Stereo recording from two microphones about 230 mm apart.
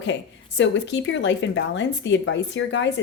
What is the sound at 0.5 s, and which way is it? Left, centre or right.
Speech, left.